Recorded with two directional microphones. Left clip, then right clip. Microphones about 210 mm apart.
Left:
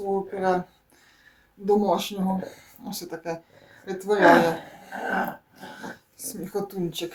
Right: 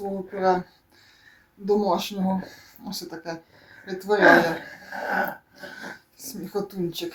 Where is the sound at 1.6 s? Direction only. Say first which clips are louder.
Left 1 dB; centre (ahead or behind).